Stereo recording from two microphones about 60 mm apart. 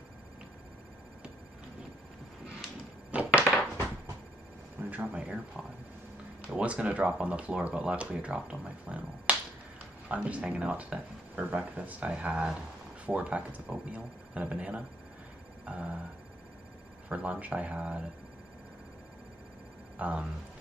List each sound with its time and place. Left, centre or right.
3.1 s a sound: right
5.0 s speech: centre
6.5 s speech: right
15.6 s a sound: centre
17.1 s speech: right
20.0 s speech: right